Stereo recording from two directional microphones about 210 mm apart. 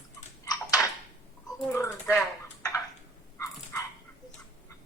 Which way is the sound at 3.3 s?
15° left (ahead or behind).